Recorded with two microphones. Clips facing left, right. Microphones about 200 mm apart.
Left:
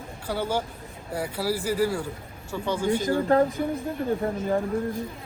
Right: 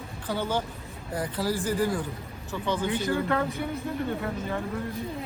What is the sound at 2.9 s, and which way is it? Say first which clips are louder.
Speech: left 7 dB; 45° left (ahead or behind).